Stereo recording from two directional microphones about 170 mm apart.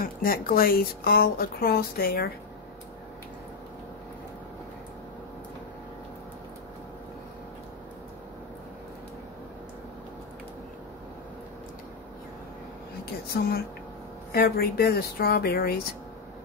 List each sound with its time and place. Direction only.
0.0 s speech: 60° left (ahead or behind)
13.3 s speech: 65° left (ahead or behind)